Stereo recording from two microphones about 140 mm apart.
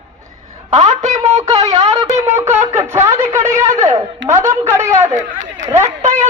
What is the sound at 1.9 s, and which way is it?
Wind instrument, 30° right (ahead or behind).